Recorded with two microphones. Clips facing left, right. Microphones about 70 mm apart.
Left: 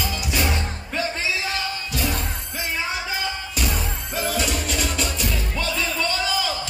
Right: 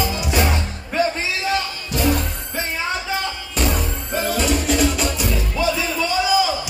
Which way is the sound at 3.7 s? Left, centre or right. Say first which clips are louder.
Right 4 dB; centre.